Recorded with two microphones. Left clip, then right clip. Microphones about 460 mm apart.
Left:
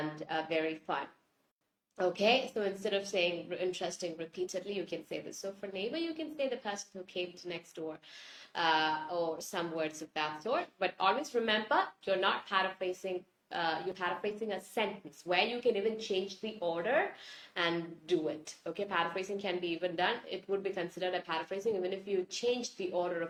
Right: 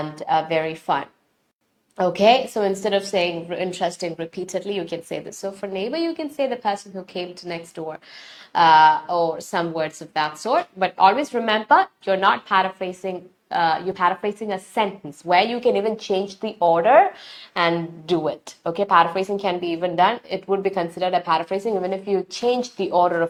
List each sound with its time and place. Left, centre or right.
0.2 s a woman's voice: right
2.0 s a woman's voice: right